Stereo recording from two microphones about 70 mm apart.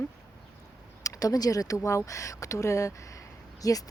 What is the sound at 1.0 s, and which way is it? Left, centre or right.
Speech, left.